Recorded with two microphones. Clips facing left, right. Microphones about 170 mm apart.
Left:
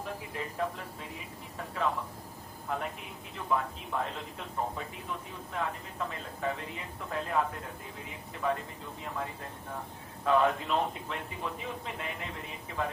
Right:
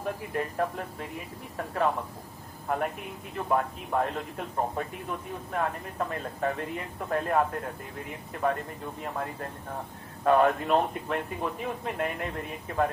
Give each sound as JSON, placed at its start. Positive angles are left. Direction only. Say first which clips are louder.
{"t": 0.0, "sound": "a man's voice", "louder": "right 7 dB", "side_deg": -55}